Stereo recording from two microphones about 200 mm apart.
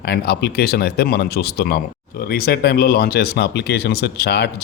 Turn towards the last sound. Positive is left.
turn(degrees=55)  # may be behind; listen again after turning